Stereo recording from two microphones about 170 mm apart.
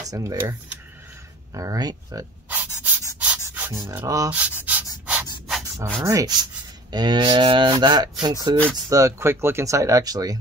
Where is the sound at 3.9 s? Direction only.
15° right (ahead or behind).